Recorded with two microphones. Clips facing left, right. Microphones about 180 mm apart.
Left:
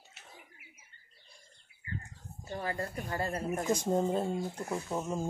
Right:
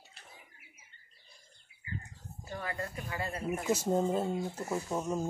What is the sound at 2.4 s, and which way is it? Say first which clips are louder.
Speech: left 3 dB; 25° left (ahead or behind).